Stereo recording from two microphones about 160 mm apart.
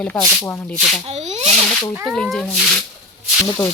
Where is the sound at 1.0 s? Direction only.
45° right (ahead or behind).